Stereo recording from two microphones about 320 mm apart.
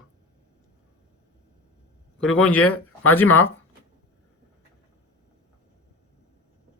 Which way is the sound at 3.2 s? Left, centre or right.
Centre.